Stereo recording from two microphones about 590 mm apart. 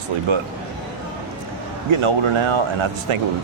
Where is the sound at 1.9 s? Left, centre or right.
Right.